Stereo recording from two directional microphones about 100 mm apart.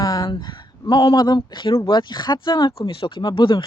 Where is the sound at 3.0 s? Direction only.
55° left (ahead or behind).